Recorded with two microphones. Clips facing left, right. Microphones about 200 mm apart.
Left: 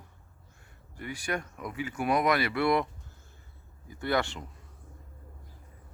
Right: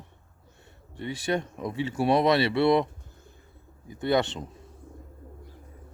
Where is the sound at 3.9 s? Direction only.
20° right (ahead or behind).